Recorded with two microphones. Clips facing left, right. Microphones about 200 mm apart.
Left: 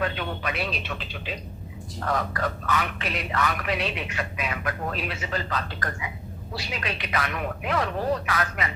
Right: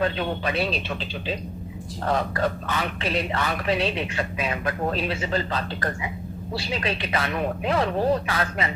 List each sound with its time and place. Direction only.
0.0 s a man's voice: 30° right (ahead or behind)